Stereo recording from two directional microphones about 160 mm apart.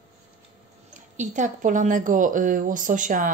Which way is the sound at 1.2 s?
50° right (ahead or behind).